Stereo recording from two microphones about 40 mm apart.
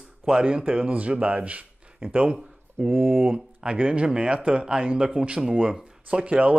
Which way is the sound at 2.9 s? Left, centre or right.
Right.